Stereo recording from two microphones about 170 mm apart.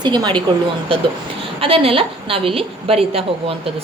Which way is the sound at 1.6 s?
35° right (ahead or behind).